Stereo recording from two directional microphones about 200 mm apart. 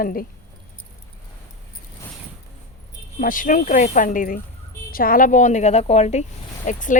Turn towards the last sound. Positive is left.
turn(degrees=40)  # may be behind; listen again after turning